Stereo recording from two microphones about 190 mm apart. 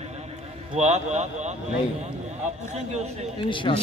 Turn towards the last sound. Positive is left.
turn(degrees=25)  # may be behind; listen again after turning